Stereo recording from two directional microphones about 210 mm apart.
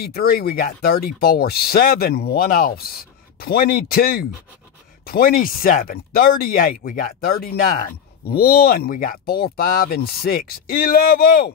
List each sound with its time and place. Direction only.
0.0 s speech: 45° left (ahead or behind)